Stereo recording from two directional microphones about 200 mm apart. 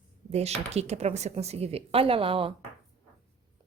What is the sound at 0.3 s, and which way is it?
A woman's voice, 30° right (ahead or behind).